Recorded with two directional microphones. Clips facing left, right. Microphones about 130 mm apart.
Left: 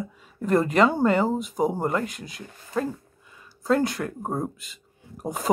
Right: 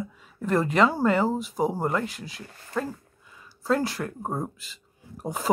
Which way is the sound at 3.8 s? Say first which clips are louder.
Left 3 dB; 30° right (ahead or behind).